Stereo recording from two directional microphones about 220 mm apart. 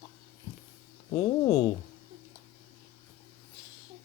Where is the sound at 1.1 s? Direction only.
20° left (ahead or behind).